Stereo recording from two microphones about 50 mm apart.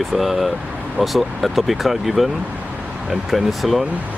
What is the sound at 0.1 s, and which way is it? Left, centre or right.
Speech, centre.